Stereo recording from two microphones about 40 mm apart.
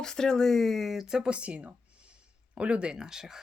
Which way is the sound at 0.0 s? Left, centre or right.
Centre.